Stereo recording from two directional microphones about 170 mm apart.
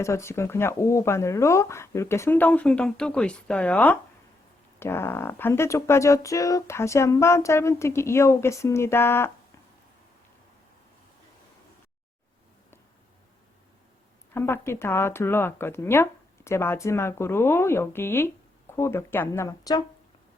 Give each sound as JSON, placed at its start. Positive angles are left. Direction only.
{"t": 0.0, "sound": "speech", "side_deg": 15}
{"t": 14.3, "sound": "speech", "side_deg": 15}